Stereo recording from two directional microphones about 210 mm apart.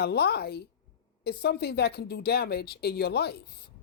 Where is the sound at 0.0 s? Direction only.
50° left (ahead or behind).